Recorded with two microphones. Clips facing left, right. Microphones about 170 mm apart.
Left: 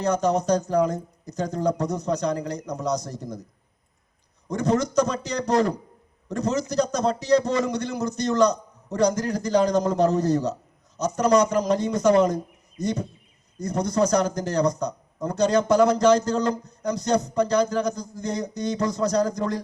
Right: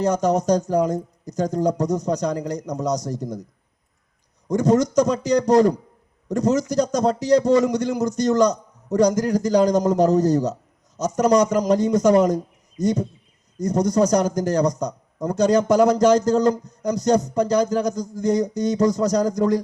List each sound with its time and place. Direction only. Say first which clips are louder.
0.0 s a man's voice: right 3 dB; 40° right (ahead or behind)
4.5 s a man's voice: right 5 dB; 40° right (ahead or behind)
5.0 s speech: right 6 dB; 15° right (ahead or behind)
5.4 s a man's voice: right 4 dB; 40° right (ahead or behind)